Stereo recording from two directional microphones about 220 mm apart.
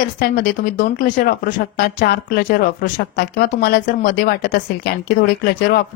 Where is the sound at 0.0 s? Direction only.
40° left (ahead or behind).